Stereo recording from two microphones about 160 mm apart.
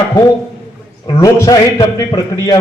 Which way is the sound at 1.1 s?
20° left (ahead or behind).